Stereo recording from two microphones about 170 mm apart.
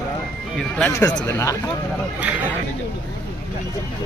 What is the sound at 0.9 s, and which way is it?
Speech, 20° left (ahead or behind).